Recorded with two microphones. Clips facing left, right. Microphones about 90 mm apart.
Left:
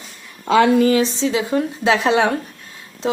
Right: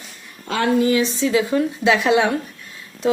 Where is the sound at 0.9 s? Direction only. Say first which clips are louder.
Left 1 dB; 30° left (ahead or behind).